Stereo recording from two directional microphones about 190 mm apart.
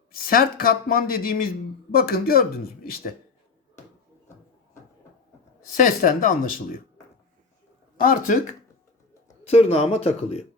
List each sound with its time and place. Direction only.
0.1 s speech: 50° left (ahead or behind)
5.7 s speech: 45° left (ahead or behind)
8.0 s speech: 45° left (ahead or behind)
9.4 s speech: 35° left (ahead or behind)